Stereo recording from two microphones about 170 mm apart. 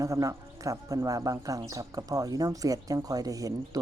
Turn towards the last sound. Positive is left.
turn(degrees=-20)  # may be behind; listen again after turning